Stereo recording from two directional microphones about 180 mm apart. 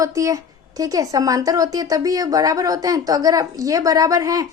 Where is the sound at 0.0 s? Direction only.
15° right (ahead or behind).